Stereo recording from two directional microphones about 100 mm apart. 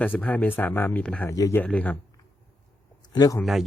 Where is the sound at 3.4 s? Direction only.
Centre (ahead or behind).